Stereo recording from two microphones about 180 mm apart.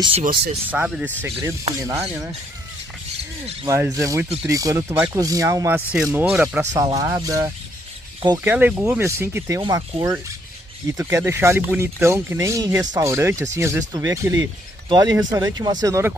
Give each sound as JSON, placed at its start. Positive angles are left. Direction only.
{"t": 0.7, "sound": "speech", "side_deg": -5}
{"t": 1.2, "sound": "speech", "side_deg": -20}
{"t": 3.6, "sound": "speech", "side_deg": -15}
{"t": 6.7, "sound": "speech", "side_deg": -20}